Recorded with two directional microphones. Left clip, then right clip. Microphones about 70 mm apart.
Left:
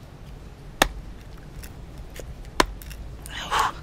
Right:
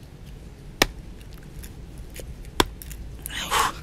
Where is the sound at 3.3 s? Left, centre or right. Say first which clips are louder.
Even; right.